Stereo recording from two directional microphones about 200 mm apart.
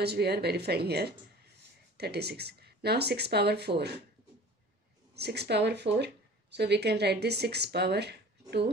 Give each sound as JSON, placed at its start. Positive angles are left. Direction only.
{"t": 0.0, "sound": "speech", "side_deg": -55}
{"t": 5.1, "sound": "speech", "side_deg": -55}